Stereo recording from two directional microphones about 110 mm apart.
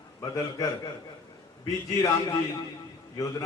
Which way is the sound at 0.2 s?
35° left (ahead or behind).